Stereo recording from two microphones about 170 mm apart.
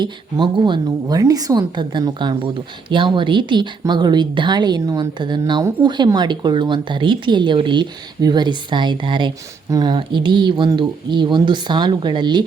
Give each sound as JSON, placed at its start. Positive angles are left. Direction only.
{"t": 0.0, "sound": "speech", "side_deg": -25}